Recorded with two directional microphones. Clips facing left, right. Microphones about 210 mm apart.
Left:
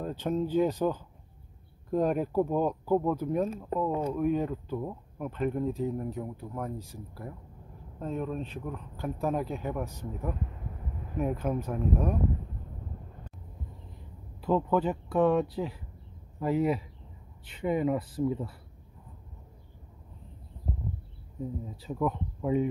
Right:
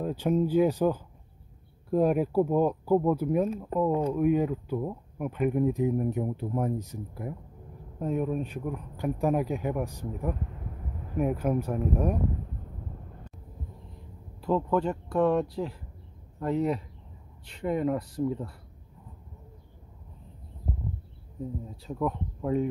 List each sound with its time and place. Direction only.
0.0 s speech: 10° right (ahead or behind)
13.9 s speech: centre (ahead or behind)
21.8 s speech: centre (ahead or behind)